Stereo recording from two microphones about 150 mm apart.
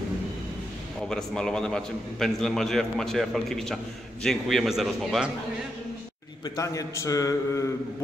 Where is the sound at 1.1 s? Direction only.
5° left (ahead or behind).